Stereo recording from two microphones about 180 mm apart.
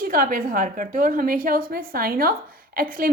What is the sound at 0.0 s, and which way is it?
A woman's voice, 55° right (ahead or behind).